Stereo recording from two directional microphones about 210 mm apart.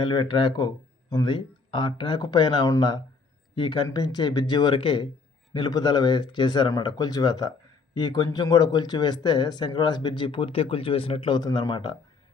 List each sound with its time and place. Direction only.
0.0 s speech: 20° left (ahead or behind)